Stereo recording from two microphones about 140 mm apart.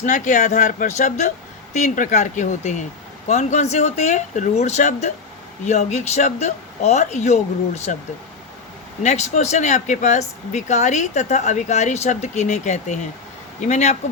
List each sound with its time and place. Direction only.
0.0 s speech: 65° left (ahead or behind)
9.0 s speech: 55° left (ahead or behind)